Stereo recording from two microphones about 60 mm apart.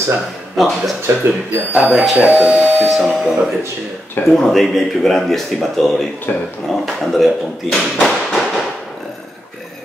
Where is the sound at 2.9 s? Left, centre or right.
Centre.